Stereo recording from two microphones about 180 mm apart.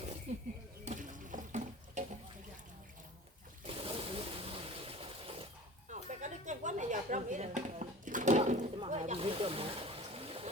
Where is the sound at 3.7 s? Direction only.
30° right (ahead or behind).